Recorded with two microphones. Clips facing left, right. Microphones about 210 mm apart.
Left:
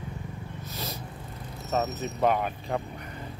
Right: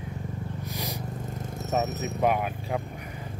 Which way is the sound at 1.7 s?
10° right (ahead or behind).